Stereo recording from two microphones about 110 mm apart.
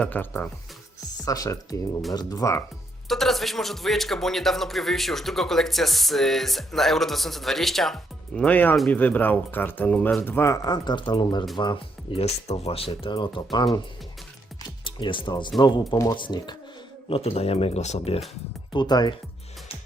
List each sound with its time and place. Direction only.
0.0 s speech: 15° left (ahead or behind)
1.2 s speech: 30° left (ahead or behind)
3.1 s a man's voice: centre (ahead or behind)
8.4 s speech: 15° left (ahead or behind); by 12.2 s 45° left (ahead or behind)
12.2 s speech: 70° left (ahead or behind); by 13.7 s 45° left (ahead or behind)
14.8 s speech: 50° left (ahead or behind)
17.1 s speech: 65° left (ahead or behind)
18.7 s speech: 40° left (ahead or behind)